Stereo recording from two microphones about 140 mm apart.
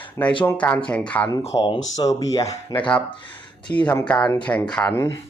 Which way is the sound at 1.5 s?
30° left (ahead or behind).